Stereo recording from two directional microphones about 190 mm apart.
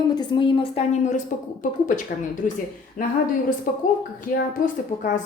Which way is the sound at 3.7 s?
50° left (ahead or behind).